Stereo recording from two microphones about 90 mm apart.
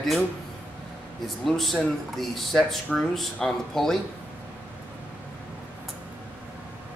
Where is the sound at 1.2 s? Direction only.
Centre (ahead or behind).